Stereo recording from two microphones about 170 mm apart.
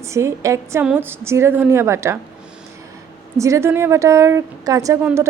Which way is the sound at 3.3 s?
15° right (ahead or behind).